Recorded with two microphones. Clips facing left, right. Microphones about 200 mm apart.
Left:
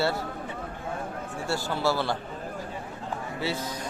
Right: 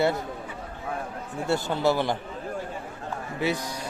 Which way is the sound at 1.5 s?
20° right (ahead or behind).